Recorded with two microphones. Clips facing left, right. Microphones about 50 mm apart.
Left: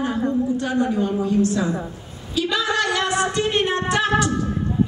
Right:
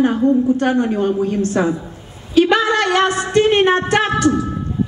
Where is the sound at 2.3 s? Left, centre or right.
Right.